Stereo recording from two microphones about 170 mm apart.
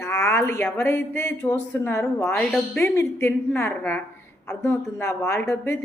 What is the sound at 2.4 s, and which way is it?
Speech, 5° left (ahead or behind).